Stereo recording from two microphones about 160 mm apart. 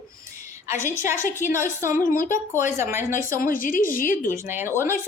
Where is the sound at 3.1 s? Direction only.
55° left (ahead or behind).